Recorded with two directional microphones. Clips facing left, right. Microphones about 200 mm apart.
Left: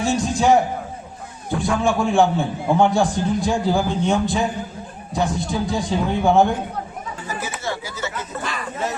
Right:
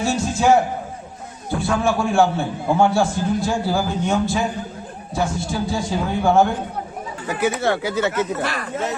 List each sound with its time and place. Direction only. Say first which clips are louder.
0.0 s a sound: even; 15° left (ahead or behind)
1.5 s a man's voice: even; 15° left (ahead or behind)
7.3 s speech: right 9 dB; 60° right (ahead or behind)